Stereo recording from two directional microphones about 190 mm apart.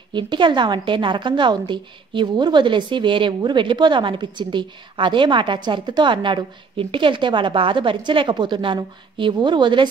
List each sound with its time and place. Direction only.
0.1 s a woman's voice: 25° right (ahead or behind)